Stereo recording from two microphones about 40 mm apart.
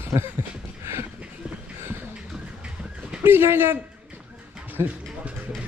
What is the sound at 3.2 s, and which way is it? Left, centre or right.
Speech, right.